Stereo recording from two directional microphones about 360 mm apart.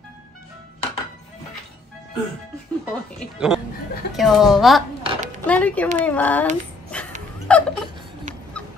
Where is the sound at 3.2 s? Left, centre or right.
Centre.